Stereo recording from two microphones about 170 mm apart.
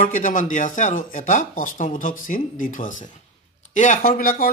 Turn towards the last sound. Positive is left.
turn(degrees=55)  # may be behind; listen again after turning